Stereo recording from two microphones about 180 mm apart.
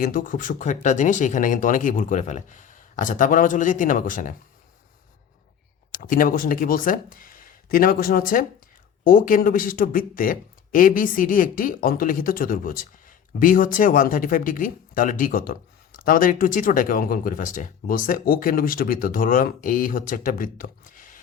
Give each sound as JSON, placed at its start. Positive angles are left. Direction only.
{"t": 0.0, "sound": "speech", "side_deg": 50}
{"t": 5.9, "sound": "speech", "side_deg": 50}